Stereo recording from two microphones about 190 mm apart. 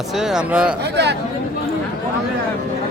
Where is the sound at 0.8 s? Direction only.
60° right (ahead or behind).